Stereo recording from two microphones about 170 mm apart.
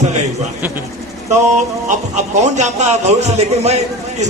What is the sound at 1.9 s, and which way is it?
A man's voice, 45° right (ahead or behind).